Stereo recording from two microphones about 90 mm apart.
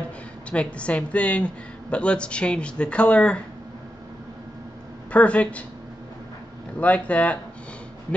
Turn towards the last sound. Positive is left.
turn(degrees=15)  # may be behind; listen again after turning